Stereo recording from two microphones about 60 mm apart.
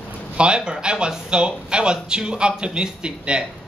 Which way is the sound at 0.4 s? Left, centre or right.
Centre.